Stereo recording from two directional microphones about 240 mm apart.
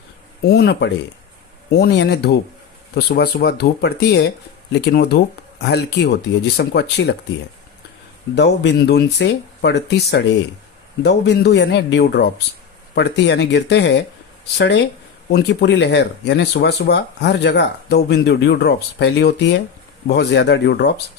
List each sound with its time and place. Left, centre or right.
0.4 s speech: left
8.4 s speech: left